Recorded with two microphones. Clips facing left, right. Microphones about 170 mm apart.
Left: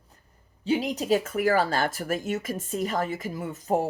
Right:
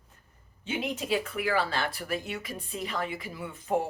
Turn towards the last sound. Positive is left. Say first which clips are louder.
# left 5 dB
turn(degrees=45)  # may be behind; listen again after turning